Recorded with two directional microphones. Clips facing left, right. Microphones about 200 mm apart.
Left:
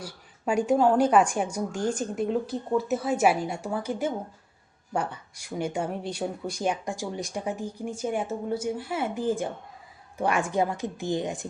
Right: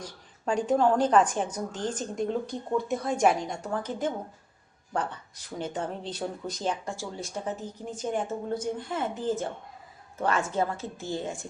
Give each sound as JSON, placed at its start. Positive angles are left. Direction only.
{"t": 0.0, "sound": "speech", "side_deg": 10}